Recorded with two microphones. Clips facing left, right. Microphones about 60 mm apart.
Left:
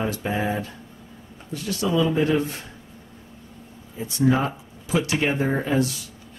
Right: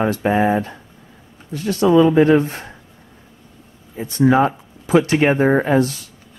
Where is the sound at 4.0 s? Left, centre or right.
Right.